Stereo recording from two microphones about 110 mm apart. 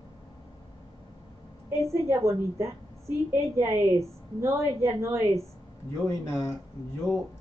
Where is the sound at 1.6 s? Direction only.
25° right (ahead or behind).